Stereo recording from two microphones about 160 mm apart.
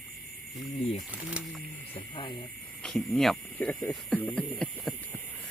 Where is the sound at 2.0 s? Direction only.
30° left (ahead or behind).